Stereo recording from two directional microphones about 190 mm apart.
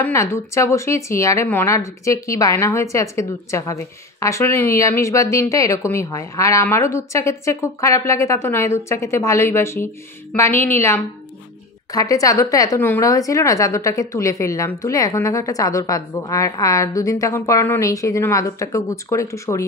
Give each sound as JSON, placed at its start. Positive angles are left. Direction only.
{"t": 0.0, "sound": "a woman's voice", "side_deg": 15}